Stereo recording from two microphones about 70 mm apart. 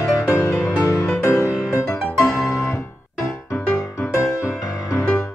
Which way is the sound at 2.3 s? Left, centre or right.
Left.